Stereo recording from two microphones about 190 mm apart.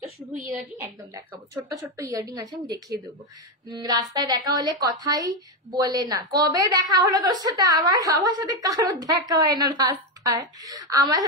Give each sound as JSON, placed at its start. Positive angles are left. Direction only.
{"t": 0.7, "sound": "a woman's voice", "side_deg": -15}
{"t": 3.7, "sound": "a woman's voice", "side_deg": -20}